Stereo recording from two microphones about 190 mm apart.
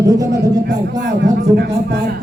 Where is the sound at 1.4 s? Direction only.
60° right (ahead or behind).